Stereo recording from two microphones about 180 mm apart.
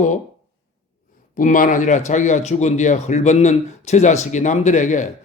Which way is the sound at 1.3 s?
45° left (ahead or behind).